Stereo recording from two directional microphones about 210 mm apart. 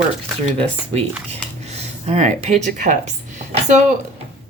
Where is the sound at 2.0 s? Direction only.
30° right (ahead or behind).